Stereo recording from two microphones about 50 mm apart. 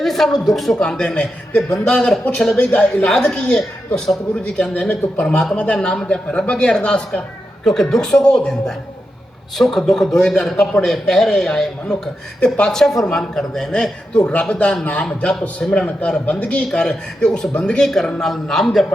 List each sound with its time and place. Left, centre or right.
0.0 s speech: centre
0.8 s a man's voice: centre
3.1 s a man's voice: centre
4.7 s a man's voice: left
12.7 s a man's voice: centre